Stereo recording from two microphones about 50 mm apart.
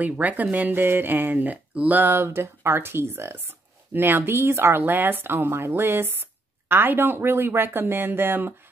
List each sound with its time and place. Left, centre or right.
0.2 s speech: right
4.8 s speech: right